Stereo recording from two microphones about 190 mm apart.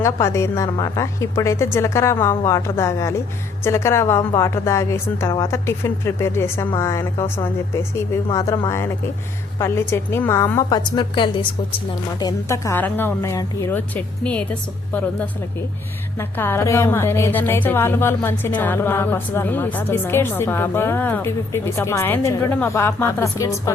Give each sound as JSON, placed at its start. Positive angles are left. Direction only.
{"t": 0.0, "sound": "a woman's voice", "side_deg": 15}
{"t": 12.2, "sound": "a woman's voice", "side_deg": 15}
{"t": 16.1, "sound": "a woman's voice", "side_deg": 10}